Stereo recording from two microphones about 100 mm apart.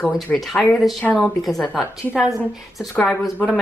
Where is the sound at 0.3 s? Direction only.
10° left (ahead or behind).